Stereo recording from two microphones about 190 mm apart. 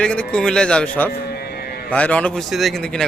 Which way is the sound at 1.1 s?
55° left (ahead or behind).